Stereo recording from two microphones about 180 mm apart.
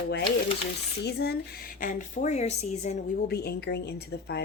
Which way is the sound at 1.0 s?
65° left (ahead or behind).